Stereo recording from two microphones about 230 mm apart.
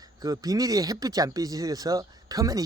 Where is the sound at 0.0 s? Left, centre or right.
Centre.